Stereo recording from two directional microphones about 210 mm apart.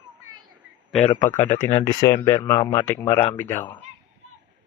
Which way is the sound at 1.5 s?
35° left (ahead or behind).